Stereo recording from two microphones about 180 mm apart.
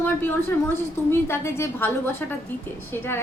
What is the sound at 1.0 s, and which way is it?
A woman's voice, 15° left (ahead or behind).